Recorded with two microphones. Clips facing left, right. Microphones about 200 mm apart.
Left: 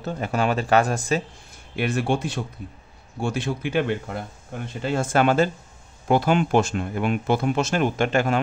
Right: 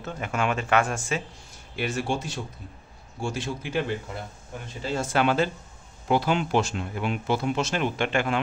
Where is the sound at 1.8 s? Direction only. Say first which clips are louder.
Left 5 dB; 60° left (ahead or behind).